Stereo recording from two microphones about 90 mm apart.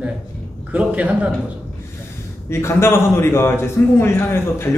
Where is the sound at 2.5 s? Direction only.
30° left (ahead or behind).